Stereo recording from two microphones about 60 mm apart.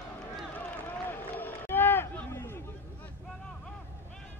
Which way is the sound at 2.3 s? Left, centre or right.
Left.